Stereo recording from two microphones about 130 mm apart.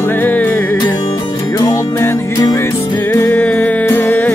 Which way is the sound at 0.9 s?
35° left (ahead or behind).